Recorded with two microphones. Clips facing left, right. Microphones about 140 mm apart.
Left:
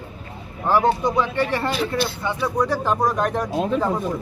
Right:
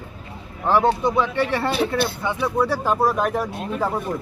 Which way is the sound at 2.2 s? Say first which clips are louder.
Right 1 dB; 15° right (ahead or behind).